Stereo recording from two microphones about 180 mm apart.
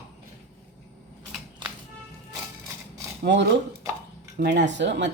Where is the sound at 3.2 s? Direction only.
75° right (ahead or behind).